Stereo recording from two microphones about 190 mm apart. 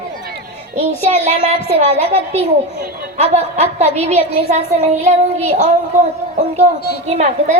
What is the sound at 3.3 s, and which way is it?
A child's voice, 35° right (ahead or behind).